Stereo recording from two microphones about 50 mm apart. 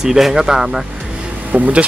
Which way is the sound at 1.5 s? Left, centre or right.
Right.